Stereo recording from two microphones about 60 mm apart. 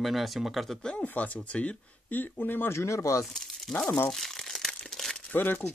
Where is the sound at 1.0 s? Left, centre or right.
Left.